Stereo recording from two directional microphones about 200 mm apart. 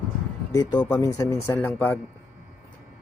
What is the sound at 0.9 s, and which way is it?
Speech, 20° left (ahead or behind).